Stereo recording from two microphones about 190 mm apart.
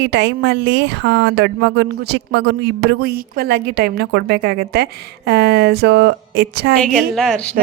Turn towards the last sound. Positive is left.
turn(degrees=5)  # may be behind; listen again after turning